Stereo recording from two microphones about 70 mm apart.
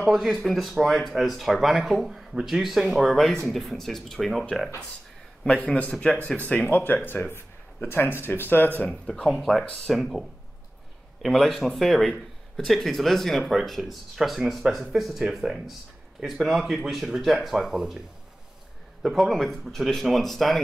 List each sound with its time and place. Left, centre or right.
0.0 s speech: centre
5.7 s speech: centre
8.8 s speech: centre
11.2 s speech: centre
19.0 s speech: centre